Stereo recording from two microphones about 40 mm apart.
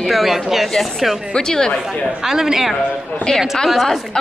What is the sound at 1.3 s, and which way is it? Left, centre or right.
Speech, centre.